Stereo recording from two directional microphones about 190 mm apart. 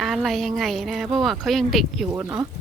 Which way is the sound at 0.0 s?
Centre (ahead or behind).